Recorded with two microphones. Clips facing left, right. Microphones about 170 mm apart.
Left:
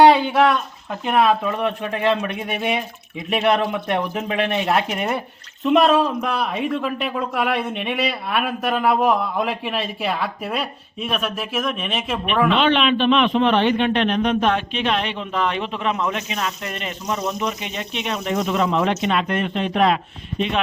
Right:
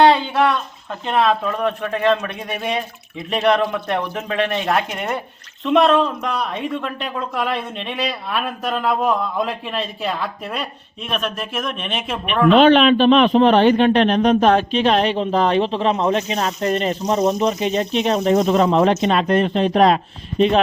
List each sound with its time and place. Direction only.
0.0 s speech: 15° left (ahead or behind)
12.5 s a man's voice: 40° right (ahead or behind)